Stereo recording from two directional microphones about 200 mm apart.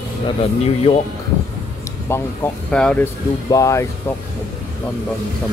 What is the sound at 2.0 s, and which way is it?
Speech, 10° left (ahead or behind).